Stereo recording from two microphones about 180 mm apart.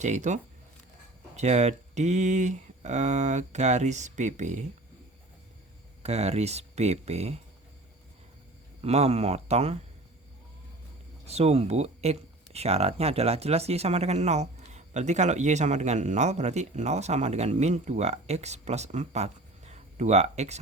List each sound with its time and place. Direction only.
0.0 s speech: 40° right (ahead or behind)
1.4 s speech: 40° right (ahead or behind)
6.0 s speech: 35° right (ahead or behind)
8.8 s speech: 35° right (ahead or behind)
11.3 s speech: 35° right (ahead or behind)